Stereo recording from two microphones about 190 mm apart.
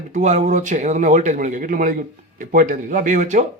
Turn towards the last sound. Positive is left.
turn(degrees=-40)  # may be behind; listen again after turning